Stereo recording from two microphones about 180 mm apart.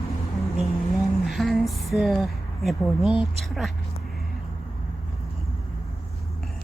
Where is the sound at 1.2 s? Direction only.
Centre (ahead or behind).